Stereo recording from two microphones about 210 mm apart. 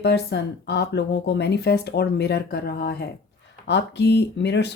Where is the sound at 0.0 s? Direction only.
55° left (ahead or behind).